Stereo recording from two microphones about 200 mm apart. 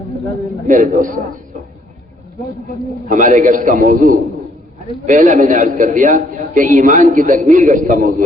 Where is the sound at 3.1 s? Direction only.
40° right (ahead or behind).